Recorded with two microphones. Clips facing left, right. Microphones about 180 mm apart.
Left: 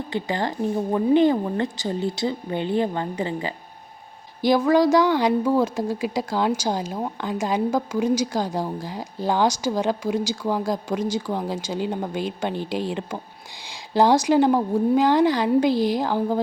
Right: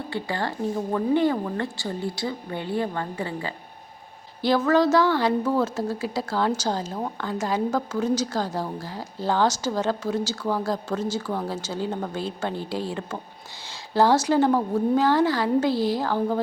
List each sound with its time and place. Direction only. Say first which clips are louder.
0.1 s a woman's voice: left 3 dB; 20° left (ahead or behind)